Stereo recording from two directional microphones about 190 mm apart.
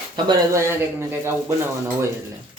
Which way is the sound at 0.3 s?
15° right (ahead or behind).